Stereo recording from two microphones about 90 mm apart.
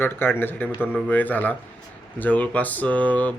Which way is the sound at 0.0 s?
25° left (ahead or behind).